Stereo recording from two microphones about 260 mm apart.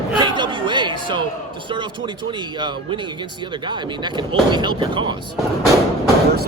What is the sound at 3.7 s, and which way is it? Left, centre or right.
Speech, centre.